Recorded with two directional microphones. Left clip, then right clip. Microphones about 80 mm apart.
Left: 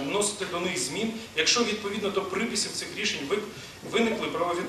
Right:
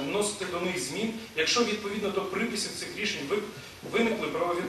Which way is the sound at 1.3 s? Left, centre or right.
Left.